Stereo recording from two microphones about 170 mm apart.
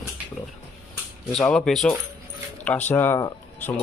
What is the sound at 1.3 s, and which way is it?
Speech, 5° left (ahead or behind).